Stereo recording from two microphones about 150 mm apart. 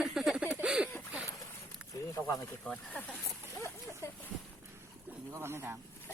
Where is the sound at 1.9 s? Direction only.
20° left (ahead or behind).